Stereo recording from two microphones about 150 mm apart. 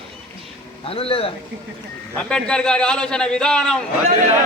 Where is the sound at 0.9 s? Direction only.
40° left (ahead or behind).